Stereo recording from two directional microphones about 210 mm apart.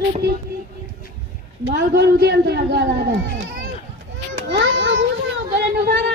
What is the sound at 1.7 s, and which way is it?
Speech, 50° right (ahead or behind).